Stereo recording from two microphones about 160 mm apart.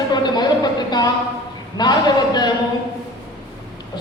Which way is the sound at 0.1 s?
25° left (ahead or behind).